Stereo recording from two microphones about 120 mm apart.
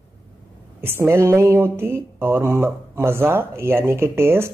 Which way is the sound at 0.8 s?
20° right (ahead or behind).